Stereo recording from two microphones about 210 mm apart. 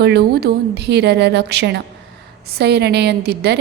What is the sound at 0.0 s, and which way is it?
A woman's voice, 50° right (ahead or behind).